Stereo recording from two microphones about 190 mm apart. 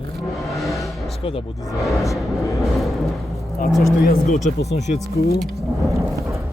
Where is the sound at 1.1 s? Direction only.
30° left (ahead or behind).